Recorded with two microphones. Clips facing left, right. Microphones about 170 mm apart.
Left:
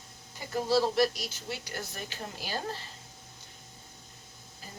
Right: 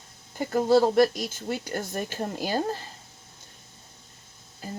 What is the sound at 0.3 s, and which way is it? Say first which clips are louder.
Speech: right 7 dB; 50° right (ahead or behind).